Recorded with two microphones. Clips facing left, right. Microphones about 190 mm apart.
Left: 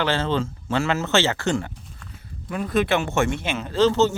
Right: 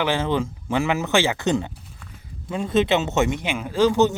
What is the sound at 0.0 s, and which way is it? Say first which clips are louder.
A man's voice: right 1 dB; 15° right (ahead or behind).